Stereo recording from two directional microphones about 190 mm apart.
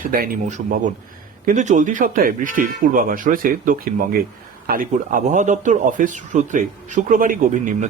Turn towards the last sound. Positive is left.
turn(degrees=-45)  # may be behind; listen again after turning